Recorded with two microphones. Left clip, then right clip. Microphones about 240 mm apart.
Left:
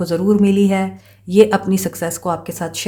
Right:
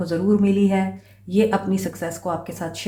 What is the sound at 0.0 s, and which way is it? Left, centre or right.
Speech, left.